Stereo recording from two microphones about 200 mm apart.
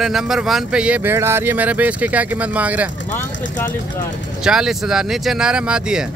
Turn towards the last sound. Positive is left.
turn(degrees=-5)  # may be behind; listen again after turning